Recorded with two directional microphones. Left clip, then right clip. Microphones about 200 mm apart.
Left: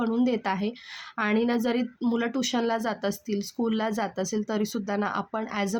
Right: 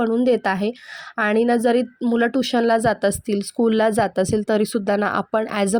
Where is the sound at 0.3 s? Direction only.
30° right (ahead or behind).